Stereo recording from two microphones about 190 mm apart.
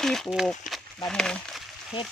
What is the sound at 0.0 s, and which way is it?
Speech, centre (ahead or behind).